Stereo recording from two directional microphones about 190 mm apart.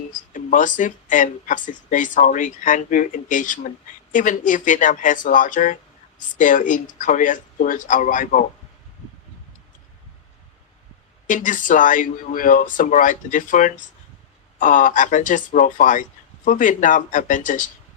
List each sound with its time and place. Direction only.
0.1 s speech: 45° left (ahead or behind)
11.3 s speech: 45° left (ahead or behind)